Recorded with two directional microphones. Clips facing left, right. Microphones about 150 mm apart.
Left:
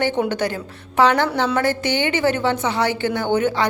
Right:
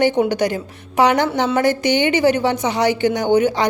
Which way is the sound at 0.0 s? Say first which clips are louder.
Right 4 dB; 15° right (ahead or behind).